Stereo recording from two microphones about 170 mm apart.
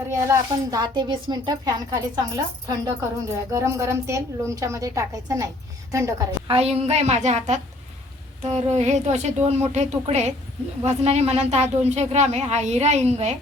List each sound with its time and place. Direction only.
0.1 s a woman's voice: 15° right (ahead or behind)
6.5 s a woman's voice: 35° right (ahead or behind)